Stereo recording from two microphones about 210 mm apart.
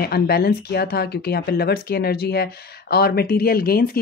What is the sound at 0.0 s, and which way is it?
Speech, 50° left (ahead or behind).